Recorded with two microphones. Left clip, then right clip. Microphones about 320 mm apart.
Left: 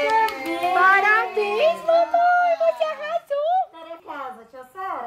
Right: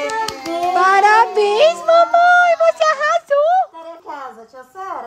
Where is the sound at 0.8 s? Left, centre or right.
Centre.